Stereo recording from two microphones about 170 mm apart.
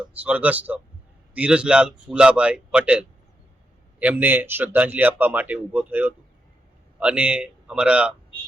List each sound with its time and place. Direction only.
0.1 s speech: 10° right (ahead or behind)